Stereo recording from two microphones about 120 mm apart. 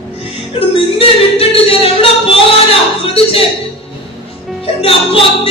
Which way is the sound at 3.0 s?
50° left (ahead or behind).